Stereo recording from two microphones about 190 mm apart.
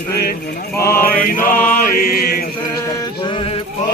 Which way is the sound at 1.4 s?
45° left (ahead or behind).